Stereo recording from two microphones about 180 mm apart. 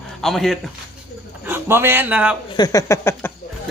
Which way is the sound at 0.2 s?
Centre (ahead or behind).